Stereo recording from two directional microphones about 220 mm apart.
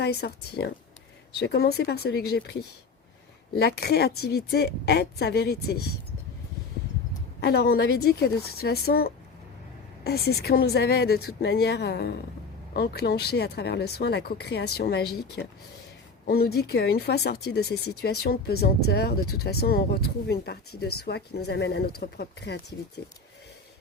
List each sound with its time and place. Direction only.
0.0 s speech: 45° left (ahead or behind)
7.4 s speech: 45° left (ahead or behind)
16.2 s speech: 45° left (ahead or behind)